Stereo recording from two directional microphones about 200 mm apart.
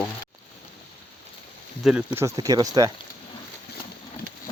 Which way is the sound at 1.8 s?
5° right (ahead or behind).